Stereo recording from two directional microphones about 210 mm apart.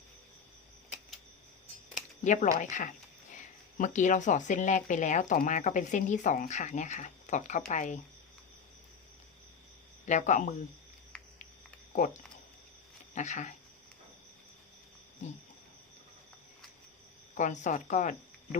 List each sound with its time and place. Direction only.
2.2 s speech: 35° left (ahead or behind)
10.1 s speech: 35° left (ahead or behind)
11.9 s speech: 35° left (ahead or behind)
15.2 s speech: 35° left (ahead or behind)
17.3 s speech: 35° left (ahead or behind)